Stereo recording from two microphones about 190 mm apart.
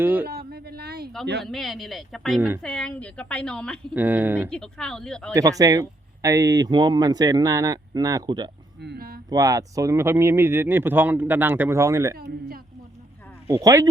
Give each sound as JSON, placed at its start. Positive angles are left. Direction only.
{"t": 0.0, "sound": "speech", "side_deg": -10}
{"t": 0.3, "sound": "a sound", "side_deg": -55}
{"t": 1.5, "sound": "a woman's voice", "side_deg": 0}
{"t": 3.9, "sound": "speech", "side_deg": -10}
{"t": 4.4, "sound": "a woman's voice", "side_deg": 5}
{"t": 5.3, "sound": "speech", "side_deg": -20}
{"t": 8.8, "sound": "a sound", "side_deg": -55}
{"t": 9.3, "sound": "speech", "side_deg": -20}
{"t": 12.1, "sound": "speech", "side_deg": -50}
{"t": 13.5, "sound": "speech", "side_deg": -20}